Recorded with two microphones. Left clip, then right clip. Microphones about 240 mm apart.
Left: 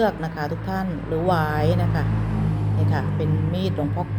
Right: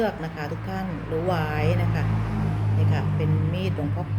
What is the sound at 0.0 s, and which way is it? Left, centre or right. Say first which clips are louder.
A woman's voice: left 4 dB; centre.